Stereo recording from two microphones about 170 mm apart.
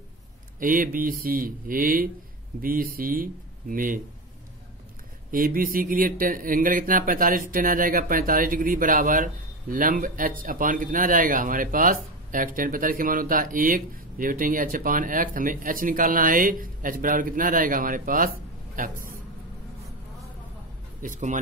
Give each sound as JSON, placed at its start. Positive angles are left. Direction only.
{"t": 0.6, "sound": "speech", "side_deg": -55}
{"t": 5.3, "sound": "speech", "side_deg": -55}
{"t": 21.0, "sound": "speech", "side_deg": -50}